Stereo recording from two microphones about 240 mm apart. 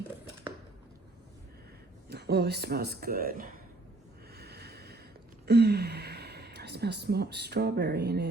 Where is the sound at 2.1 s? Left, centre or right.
Right.